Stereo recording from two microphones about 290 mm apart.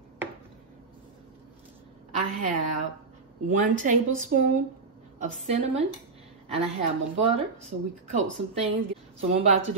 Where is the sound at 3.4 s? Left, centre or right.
Right.